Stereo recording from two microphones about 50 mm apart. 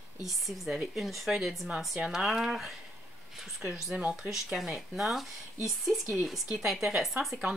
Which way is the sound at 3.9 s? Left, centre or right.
Centre.